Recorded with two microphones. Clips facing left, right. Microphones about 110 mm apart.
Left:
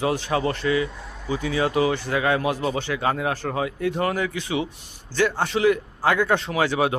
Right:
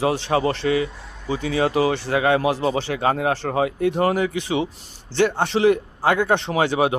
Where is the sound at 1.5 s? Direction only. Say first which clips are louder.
Right 2 dB; 25° right (ahead or behind).